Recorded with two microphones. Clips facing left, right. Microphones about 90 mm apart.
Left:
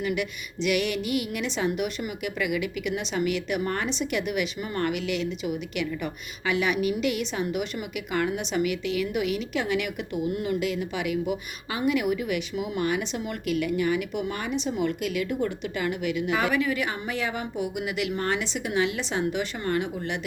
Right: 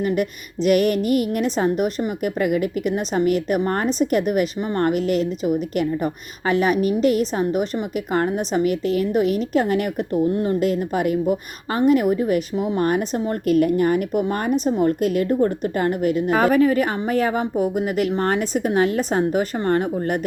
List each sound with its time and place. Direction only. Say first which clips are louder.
0.0 s a woman's voice: right 7 dB; 40° right (ahead or behind)